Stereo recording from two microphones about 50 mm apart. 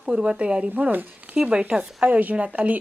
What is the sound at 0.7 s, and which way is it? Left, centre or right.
Speech, right.